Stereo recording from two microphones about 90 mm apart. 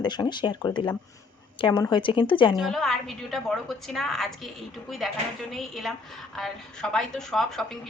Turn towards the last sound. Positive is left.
turn(degrees=5)  # may be behind; listen again after turning